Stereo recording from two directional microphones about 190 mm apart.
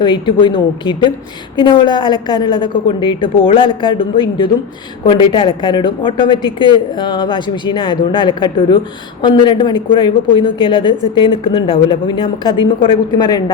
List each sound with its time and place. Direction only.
0.0 s a woman's voice: 25° left (ahead or behind)